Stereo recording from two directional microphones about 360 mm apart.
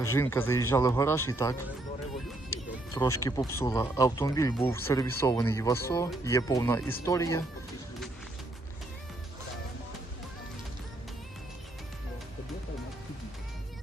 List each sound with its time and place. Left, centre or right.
0.0 s speech: centre